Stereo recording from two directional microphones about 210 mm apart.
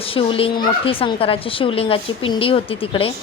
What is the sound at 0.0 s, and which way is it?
Speech, 25° left (ahead or behind).